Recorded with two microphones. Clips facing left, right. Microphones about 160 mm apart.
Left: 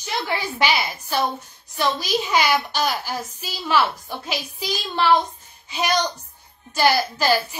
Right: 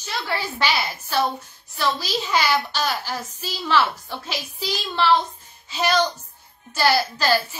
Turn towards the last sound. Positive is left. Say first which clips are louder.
# left 1 dB
turn(degrees=15)  # may be behind; listen again after turning